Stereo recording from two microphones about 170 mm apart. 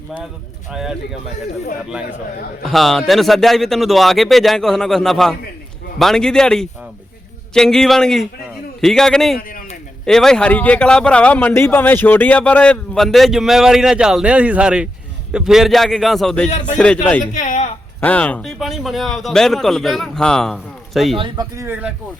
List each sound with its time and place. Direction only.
0.7 s speech: 5° right (ahead or behind)
9.4 s a sound: 55° left (ahead or behind)
10.1 s speech: 5° left (ahead or behind)
16.5 s speech: 45° left (ahead or behind)
16.7 s speech: 5° left (ahead or behind)
17.2 s speech: 45° left (ahead or behind)
18.0 s speech: 10° left (ahead or behind)
21.2 s speech: 25° right (ahead or behind)
21.7 s speech: 10° right (ahead or behind)